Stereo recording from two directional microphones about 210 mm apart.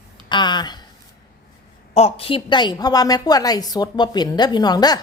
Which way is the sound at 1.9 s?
30° left (ahead or behind).